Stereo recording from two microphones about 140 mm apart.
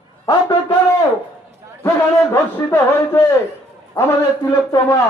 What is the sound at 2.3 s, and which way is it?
A man's voice, 15° left (ahead or behind).